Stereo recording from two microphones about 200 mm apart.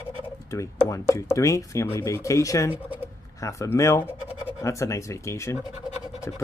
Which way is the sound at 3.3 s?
15° left (ahead or behind).